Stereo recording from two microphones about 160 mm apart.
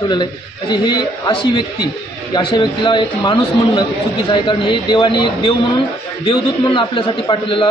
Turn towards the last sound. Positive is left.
turn(degrees=30)  # may be behind; listen again after turning